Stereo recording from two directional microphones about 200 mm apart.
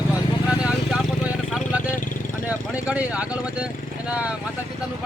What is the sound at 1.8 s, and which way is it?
Speech, 40° left (ahead or behind).